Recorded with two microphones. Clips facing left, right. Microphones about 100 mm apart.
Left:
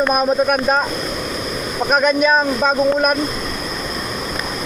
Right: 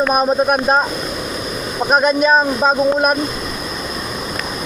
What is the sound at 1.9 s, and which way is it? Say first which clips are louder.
Speech: right 2 dB; 35° right (ahead or behind).